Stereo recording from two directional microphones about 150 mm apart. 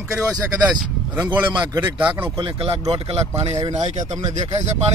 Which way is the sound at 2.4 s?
30° right (ahead or behind).